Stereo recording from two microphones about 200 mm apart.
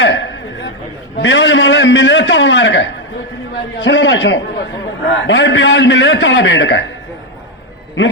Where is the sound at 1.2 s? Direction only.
65° left (ahead or behind).